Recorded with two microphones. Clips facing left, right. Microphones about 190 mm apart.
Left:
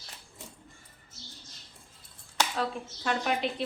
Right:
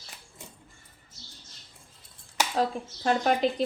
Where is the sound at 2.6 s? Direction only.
40° right (ahead or behind).